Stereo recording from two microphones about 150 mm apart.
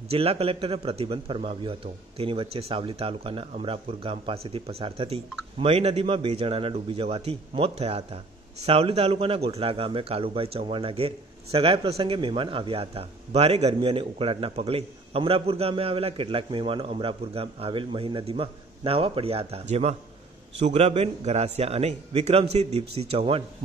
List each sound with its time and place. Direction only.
0.1 s a man's voice: 40° right (ahead or behind)